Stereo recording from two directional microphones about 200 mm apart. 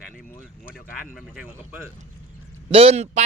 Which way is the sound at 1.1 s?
Centre (ahead or behind).